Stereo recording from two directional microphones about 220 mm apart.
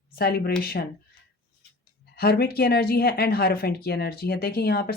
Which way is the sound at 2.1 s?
45° left (ahead or behind).